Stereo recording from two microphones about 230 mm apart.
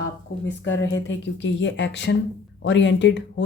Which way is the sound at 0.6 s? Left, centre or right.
Left.